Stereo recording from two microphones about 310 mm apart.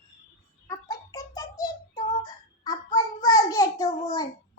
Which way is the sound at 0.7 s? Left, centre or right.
Centre.